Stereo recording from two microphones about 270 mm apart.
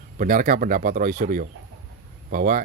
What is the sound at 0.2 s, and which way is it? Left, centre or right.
Speech, right.